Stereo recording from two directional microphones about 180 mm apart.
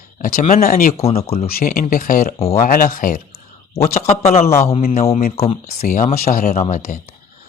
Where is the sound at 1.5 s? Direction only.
55° left (ahead or behind); by 6.8 s 40° left (ahead or behind).